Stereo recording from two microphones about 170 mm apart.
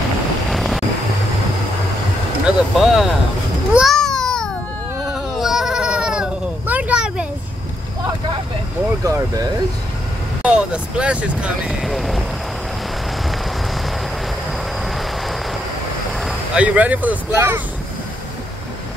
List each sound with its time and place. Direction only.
0.5 s vehicle: centre (ahead or behind)
2.4 s speech: centre (ahead or behind)
3.7 s a sound: centre (ahead or behind)
5.0 s sheep: centre (ahead or behind)
9.0 s speech: 20° right (ahead or behind)
10.4 s speech: 5° right (ahead or behind)
14.9 s train: centre (ahead or behind)
16.2 s speech: 5° right (ahead or behind)